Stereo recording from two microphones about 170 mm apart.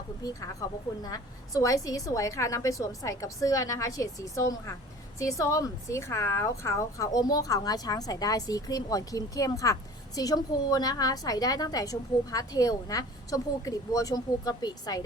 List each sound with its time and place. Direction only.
0.6 s a woman's voice: 20° left (ahead or behind)